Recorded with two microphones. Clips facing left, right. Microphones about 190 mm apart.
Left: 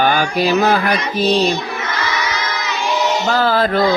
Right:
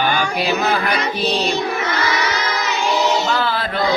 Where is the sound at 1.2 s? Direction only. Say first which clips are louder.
Left 8 dB; 40° left (ahead or behind).